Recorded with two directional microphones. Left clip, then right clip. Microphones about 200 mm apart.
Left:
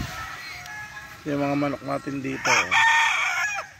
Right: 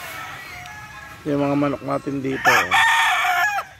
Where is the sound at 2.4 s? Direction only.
40° right (ahead or behind).